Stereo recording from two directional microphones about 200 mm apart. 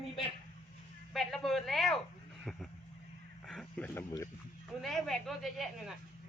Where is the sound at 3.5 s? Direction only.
5° left (ahead or behind).